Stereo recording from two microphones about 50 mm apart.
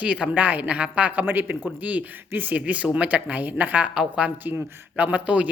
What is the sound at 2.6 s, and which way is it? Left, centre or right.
Speech, right.